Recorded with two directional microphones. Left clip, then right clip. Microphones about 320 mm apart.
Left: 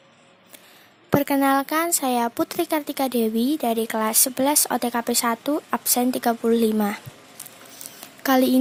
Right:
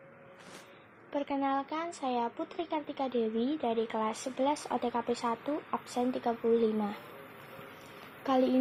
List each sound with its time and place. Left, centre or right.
1.2 s speech: left
8.2 s speech: left